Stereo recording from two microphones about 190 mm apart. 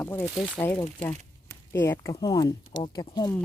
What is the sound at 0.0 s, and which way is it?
Speech, 10° left (ahead or behind).